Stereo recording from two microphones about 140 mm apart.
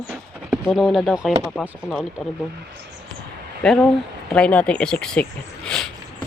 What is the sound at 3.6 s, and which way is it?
Speech, 5° left (ahead or behind).